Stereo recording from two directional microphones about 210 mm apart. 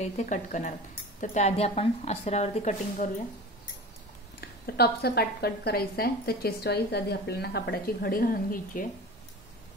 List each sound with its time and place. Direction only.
0.0 s a woman's voice: 35° left (ahead or behind)
4.4 s a woman's voice: 50° left (ahead or behind)